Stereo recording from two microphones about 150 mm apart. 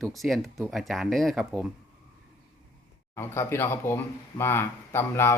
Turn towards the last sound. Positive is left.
turn(degrees=15)  # may be behind; listen again after turning